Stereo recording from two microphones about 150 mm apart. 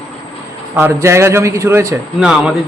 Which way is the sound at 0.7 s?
15° right (ahead or behind).